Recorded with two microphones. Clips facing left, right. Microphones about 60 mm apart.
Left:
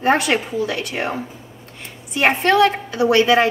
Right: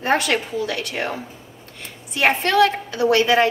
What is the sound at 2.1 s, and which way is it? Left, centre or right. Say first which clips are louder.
A woman's voice: left 2 dB; centre.